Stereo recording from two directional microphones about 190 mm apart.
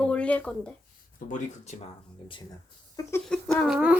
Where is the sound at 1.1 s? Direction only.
45° left (ahead or behind).